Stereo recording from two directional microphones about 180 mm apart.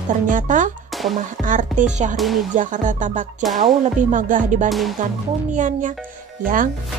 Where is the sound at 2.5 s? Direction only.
45° right (ahead or behind).